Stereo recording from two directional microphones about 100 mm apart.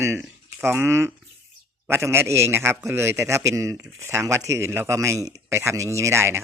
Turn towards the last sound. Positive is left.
turn(degrees=-25)  # may be behind; listen again after turning